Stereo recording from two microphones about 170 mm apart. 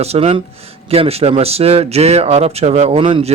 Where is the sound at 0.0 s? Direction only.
35° right (ahead or behind).